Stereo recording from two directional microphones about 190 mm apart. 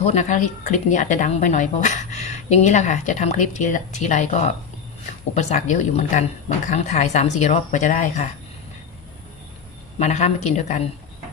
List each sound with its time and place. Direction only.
0.0 s speech: 35° left (ahead or behind)
10.0 s speech: 35° left (ahead or behind)